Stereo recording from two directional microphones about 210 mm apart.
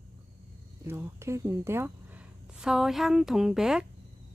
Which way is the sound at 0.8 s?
15° right (ahead or behind).